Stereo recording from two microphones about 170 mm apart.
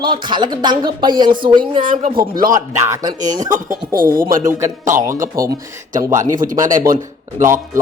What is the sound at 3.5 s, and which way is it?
Speech, 55° right (ahead or behind).